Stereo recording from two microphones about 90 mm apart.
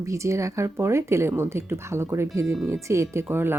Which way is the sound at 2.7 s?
35° right (ahead or behind).